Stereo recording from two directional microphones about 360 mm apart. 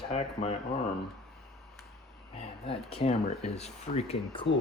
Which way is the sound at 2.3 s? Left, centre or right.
Centre.